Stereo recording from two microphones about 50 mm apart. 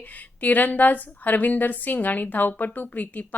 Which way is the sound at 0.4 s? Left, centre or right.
Left.